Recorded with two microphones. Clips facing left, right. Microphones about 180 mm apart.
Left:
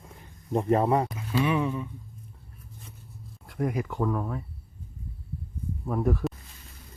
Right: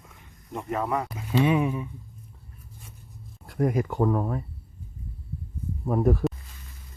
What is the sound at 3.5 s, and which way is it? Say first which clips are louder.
Speech: right 4 dB; 40° right (ahead or behind).